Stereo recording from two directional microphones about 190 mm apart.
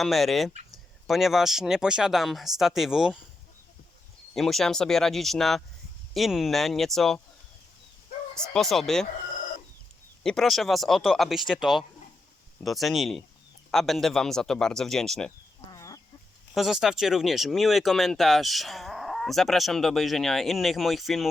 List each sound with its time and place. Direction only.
0.0 s speech: centre (ahead or behind)
4.4 s speech: centre (ahead or behind)
8.5 s speech: centre (ahead or behind)
10.2 s speech: centre (ahead or behind)
15.7 s chicken: 15° left (ahead or behind)
16.6 s speech: centre (ahead or behind)